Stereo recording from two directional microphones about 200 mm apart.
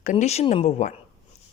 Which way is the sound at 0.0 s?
35° left (ahead or behind).